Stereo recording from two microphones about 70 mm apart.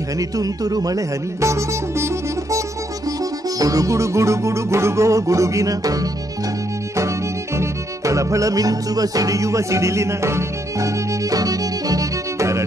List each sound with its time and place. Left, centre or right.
0.4 s speech: right
3.5 s music: right
7.5 s music: right